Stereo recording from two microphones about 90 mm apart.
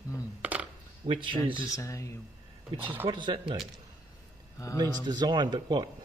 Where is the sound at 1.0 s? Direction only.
65° right (ahead or behind).